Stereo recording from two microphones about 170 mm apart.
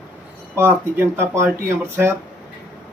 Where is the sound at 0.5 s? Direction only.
15° right (ahead or behind).